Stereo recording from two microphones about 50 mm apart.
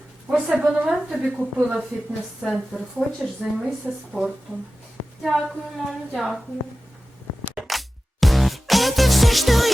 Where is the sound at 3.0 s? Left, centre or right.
Centre.